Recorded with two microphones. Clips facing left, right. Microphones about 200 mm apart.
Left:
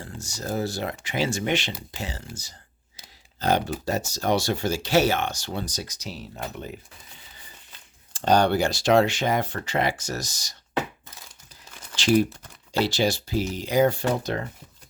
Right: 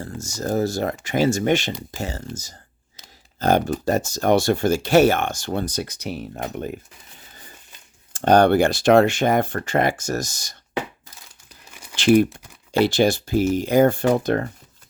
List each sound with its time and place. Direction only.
0.0 s speech: 45° right (ahead or behind)
8.1 s speech: 55° right (ahead or behind)
11.7 s crumpling: 10° right (ahead or behind)
11.9 s speech: 55° right (ahead or behind)